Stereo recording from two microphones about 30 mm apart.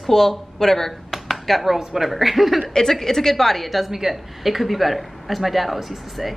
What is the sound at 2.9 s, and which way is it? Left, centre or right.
Speech, centre.